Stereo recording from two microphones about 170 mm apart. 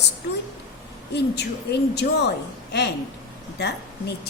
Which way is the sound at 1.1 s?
85° left.